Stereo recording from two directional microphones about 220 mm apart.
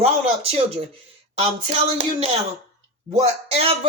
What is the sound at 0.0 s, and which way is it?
A man's voice, 30° right (ahead or behind).